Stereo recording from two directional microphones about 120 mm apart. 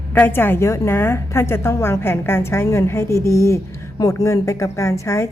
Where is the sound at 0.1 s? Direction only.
15° left (ahead or behind).